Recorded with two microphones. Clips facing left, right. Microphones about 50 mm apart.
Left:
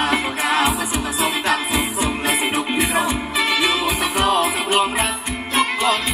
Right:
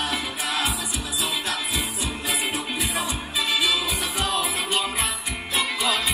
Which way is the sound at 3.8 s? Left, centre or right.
Left.